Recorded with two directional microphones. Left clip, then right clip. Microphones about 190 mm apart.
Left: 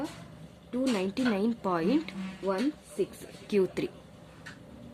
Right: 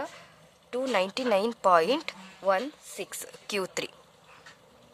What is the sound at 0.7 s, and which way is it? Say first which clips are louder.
Speech: right 4 dB; 45° right (ahead or behind).